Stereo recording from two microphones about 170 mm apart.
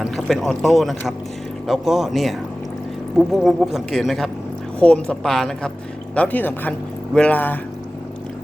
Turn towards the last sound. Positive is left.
turn(degrees=10)  # may be behind; listen again after turning